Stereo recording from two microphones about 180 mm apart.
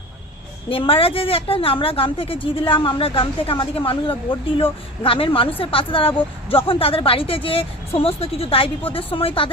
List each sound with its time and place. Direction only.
0.7 s a woman's voice: 30° left (ahead or behind)